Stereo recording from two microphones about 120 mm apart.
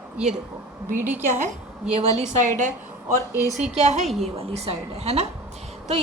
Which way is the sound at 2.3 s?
90° right.